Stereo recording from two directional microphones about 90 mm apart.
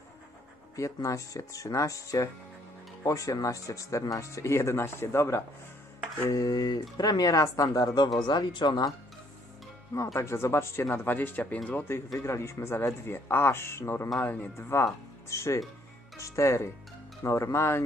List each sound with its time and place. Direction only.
0.7 s speech: 35° left (ahead or behind)
8.3 s speech: 55° left (ahead or behind)
10.1 s speech: 30° left (ahead or behind)
12.1 s speech: 30° left (ahead or behind)